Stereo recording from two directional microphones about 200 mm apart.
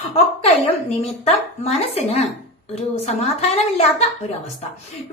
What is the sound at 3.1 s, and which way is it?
Speech, 30° left (ahead or behind).